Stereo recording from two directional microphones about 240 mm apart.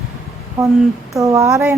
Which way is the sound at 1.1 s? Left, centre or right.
Centre.